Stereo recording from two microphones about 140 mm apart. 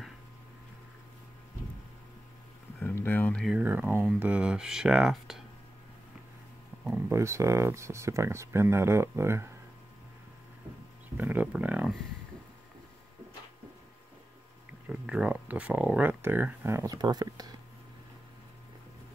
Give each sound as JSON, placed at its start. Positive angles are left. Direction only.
{"t": 2.8, "sound": "a sound", "side_deg": 15}
{"t": 3.4, "sound": "speech", "side_deg": -10}
{"t": 6.7, "sound": "a sound", "side_deg": -10}
{"t": 7.1, "sound": "speech", "side_deg": -20}
{"t": 11.1, "sound": "speech", "side_deg": -15}
{"t": 14.9, "sound": "speech", "side_deg": -10}